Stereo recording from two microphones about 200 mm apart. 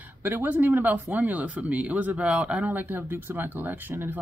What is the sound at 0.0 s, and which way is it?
Speech, 10° right (ahead or behind).